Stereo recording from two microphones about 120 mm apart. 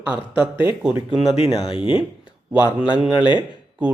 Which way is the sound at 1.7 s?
50° left (ahead or behind).